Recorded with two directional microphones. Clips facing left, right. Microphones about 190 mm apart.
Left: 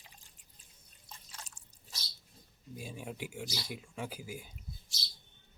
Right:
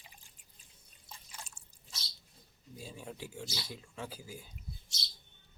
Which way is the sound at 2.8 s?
15° left (ahead or behind).